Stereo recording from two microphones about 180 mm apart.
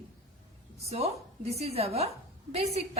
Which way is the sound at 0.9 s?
35° right (ahead or behind).